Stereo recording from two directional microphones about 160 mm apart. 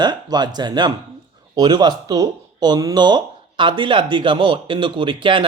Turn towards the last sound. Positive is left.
turn(degrees=-30)  # may be behind; listen again after turning